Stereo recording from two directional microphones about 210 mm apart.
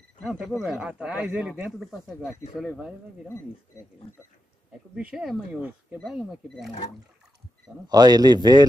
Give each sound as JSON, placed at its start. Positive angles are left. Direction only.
{"t": 0.2, "sound": "speech", "side_deg": 0}
{"t": 4.9, "sound": "speech", "side_deg": -5}
{"t": 7.9, "sound": "a man's voice", "side_deg": -20}